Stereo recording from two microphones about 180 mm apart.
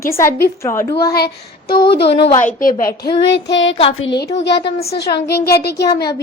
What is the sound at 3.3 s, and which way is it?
Speech, 85° left.